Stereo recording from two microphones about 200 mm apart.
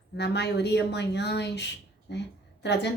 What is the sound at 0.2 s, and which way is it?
Speech, 55° left (ahead or behind).